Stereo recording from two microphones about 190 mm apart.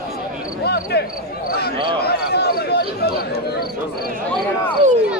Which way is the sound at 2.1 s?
60° left (ahead or behind).